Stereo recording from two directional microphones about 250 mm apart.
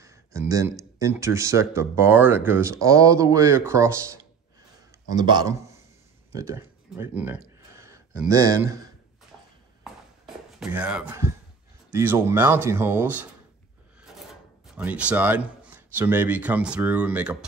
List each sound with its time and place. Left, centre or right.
0.0 s speech: centre
6.3 s a sound: centre
8.2 s speech: centre
9.8 s a sound: centre
11.9 s speech: centre
14.8 s speech: centre